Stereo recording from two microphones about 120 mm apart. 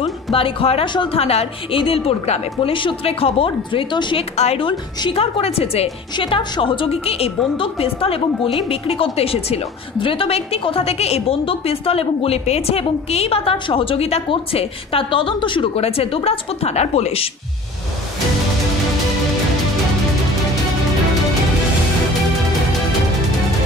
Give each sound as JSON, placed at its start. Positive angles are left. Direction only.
{"t": 0.0, "sound": "a woman's voice", "side_deg": 50}
{"t": 2.7, "sound": "a woman's voice", "side_deg": 45}
{"t": 4.4, "sound": "a woman's voice", "side_deg": 55}
{"t": 6.1, "sound": "a woman's voice", "side_deg": 45}